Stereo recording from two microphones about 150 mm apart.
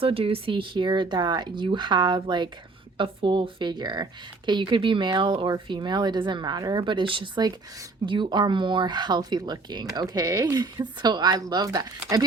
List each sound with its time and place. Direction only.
0.0 s speech: 40° right (ahead or behind)